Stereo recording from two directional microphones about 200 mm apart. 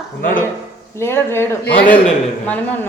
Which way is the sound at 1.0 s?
10° left (ahead or behind).